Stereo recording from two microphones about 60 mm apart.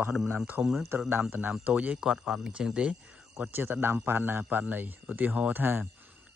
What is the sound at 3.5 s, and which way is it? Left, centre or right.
Speech, right.